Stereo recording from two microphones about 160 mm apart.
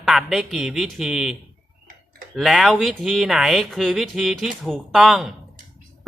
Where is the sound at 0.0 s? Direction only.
Centre (ahead or behind).